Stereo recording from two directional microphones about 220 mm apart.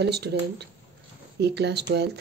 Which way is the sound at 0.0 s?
50° right (ahead or behind).